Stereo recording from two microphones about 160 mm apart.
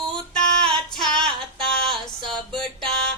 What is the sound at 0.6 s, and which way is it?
Female singing, 5° left (ahead or behind).